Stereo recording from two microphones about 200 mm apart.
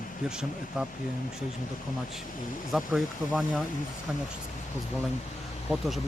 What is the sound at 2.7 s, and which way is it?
Speech, centre (ahead or behind).